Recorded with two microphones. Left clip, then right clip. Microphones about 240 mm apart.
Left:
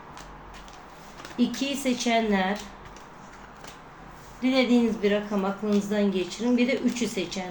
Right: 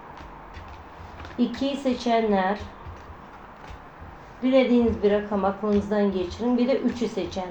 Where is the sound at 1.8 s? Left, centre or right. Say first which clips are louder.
Right 2 dB; left.